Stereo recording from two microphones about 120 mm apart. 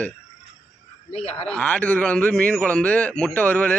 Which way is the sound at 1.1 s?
55° left (ahead or behind).